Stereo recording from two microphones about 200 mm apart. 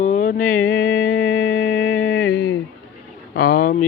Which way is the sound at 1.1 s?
90° left.